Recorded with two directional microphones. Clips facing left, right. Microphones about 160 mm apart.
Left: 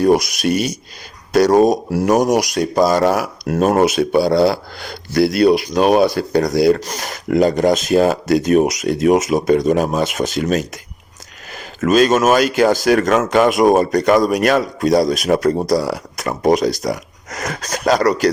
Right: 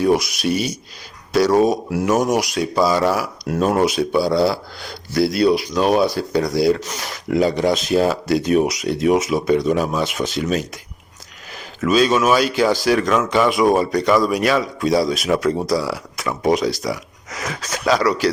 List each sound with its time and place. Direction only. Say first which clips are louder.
0.0 s speech: left 3 dB; 45° left (ahead or behind)